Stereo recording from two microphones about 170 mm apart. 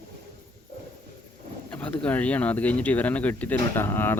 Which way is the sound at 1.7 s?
10° left (ahead or behind).